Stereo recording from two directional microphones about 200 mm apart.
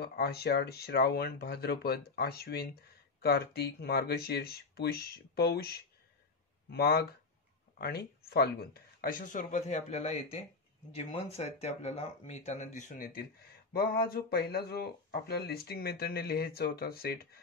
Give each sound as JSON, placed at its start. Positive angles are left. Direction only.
{"t": 0.0, "sound": "speech", "side_deg": 50}